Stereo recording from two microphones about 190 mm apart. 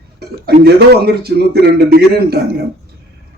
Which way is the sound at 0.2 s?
55° right (ahead or behind).